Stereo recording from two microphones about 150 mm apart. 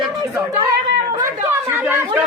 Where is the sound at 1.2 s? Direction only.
15° right (ahead or behind).